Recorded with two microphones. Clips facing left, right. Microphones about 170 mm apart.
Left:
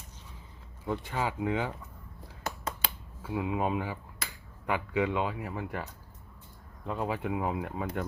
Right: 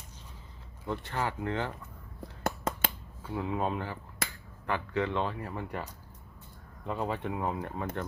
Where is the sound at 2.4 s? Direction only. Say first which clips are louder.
Right 4 dB; 50° right (ahead or behind).